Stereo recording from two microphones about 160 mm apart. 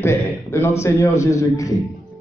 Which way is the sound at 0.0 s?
15° left (ahead or behind).